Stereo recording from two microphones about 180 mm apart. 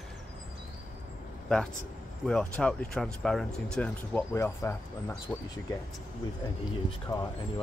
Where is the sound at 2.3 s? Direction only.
5° left (ahead or behind).